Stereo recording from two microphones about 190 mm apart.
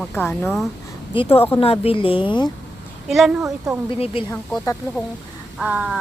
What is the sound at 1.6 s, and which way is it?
Speech, 30° left (ahead or behind).